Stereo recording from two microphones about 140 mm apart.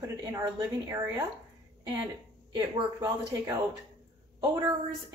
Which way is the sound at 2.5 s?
30° right (ahead or behind).